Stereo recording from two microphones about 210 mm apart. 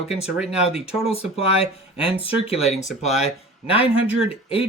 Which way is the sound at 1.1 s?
30° left (ahead or behind).